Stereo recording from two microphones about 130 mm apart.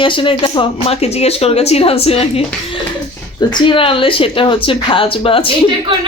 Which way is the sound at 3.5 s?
40° left (ahead or behind).